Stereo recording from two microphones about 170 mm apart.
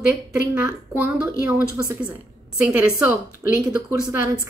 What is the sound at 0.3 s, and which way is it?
A woman's voice, 10° right (ahead or behind).